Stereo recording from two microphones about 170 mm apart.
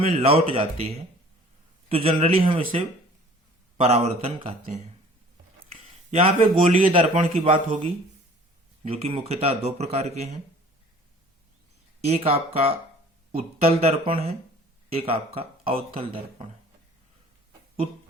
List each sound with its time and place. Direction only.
0.2 s speech: 35° right (ahead or behind)
3.8 s speech: 35° right (ahead or behind)
6.1 s speech: 35° right (ahead or behind)
12.0 s speech: 35° right (ahead or behind)